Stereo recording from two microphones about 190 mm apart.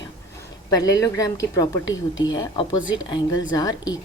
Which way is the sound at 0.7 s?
20° left (ahead or behind).